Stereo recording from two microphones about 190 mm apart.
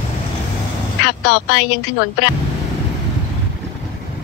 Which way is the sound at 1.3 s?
65° left (ahead or behind).